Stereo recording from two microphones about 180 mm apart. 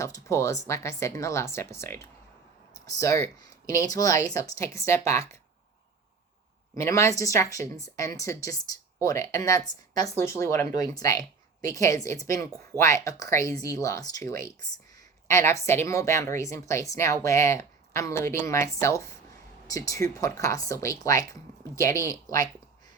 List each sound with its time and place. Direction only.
0.0 s speech: 15° left (ahead or behind)
6.7 s speech: 15° left (ahead or behind)